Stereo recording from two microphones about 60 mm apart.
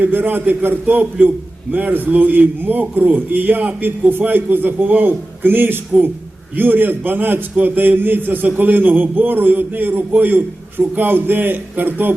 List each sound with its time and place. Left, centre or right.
0.0 s a man's voice: right